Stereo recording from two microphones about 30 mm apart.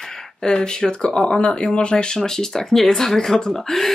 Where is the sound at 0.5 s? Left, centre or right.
Left.